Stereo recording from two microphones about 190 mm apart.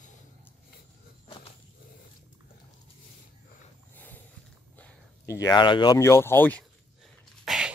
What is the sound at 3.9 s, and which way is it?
Snort, 10° left (ahead or behind).